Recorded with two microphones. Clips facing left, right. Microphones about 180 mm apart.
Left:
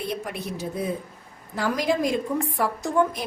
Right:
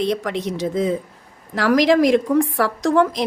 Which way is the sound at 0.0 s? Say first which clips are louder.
Right 9 dB; 90° right.